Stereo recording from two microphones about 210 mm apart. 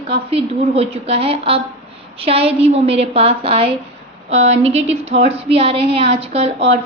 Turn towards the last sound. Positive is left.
turn(degrees=-30)  # may be behind; listen again after turning